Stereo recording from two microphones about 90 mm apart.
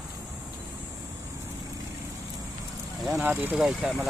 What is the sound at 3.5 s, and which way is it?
Speech, 5° right (ahead or behind).